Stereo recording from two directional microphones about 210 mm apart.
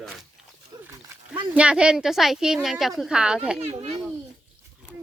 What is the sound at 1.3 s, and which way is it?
Speech, 5° right (ahead or behind).